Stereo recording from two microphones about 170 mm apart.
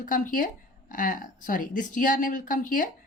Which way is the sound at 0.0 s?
50° left (ahead or behind).